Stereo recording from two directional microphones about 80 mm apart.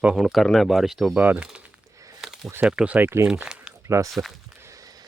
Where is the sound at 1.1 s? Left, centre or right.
Centre.